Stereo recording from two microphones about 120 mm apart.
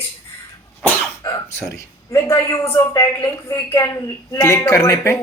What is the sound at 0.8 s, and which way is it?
Cough, 20° left (ahead or behind).